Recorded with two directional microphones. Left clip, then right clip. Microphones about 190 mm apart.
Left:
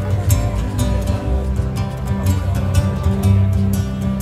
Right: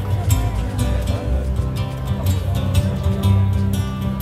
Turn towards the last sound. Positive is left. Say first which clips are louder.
# left 2 dB
turn(degrees=15)  # may be behind; listen again after turning